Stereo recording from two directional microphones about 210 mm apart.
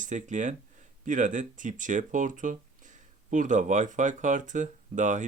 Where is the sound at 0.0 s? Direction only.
35° right (ahead or behind).